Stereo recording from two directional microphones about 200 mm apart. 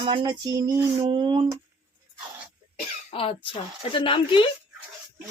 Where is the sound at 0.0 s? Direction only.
25° right (ahead or behind).